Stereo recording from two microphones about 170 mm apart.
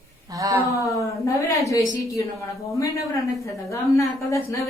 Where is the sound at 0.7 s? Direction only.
20° left (ahead or behind).